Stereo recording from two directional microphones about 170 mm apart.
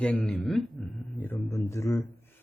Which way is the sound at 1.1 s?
15° left (ahead or behind).